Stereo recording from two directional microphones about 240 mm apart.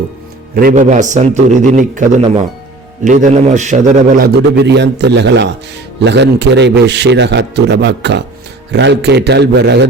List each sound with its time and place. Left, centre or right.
0.5 s a man's voice: right